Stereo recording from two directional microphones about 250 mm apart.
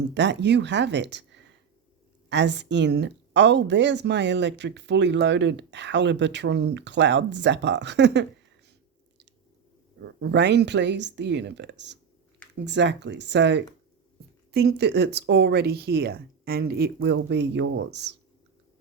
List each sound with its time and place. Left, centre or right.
0.1 s a woman's voice: right
10.0 s a woman's voice: right